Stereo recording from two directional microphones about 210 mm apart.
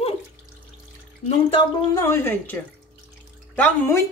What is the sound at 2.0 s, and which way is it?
Speech, 10° left (ahead or behind).